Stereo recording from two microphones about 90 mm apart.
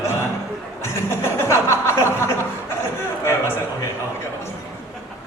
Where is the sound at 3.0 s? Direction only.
30° left (ahead or behind).